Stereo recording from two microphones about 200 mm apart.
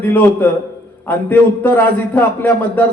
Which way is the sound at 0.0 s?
10° left (ahead or behind).